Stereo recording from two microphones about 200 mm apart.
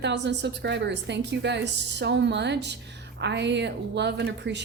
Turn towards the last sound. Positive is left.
turn(degrees=-60)  # may be behind; listen again after turning